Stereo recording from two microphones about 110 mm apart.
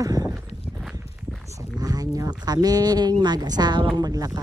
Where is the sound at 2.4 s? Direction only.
35° right (ahead or behind).